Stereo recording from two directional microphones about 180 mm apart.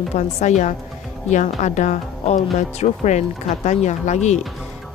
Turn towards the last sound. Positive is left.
turn(degrees=40)  # may be behind; listen again after turning